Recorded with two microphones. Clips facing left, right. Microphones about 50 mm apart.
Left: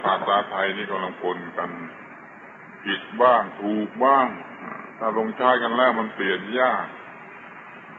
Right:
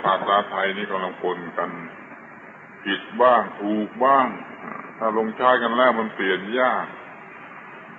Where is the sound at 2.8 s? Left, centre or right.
Centre.